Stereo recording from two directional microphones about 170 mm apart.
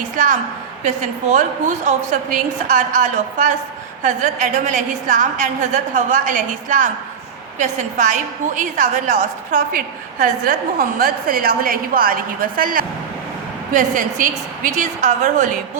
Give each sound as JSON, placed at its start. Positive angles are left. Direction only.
{"t": 0.2, "sound": "a woman's voice", "side_deg": -50}